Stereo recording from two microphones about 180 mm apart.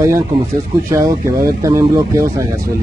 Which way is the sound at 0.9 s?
20° right (ahead or behind).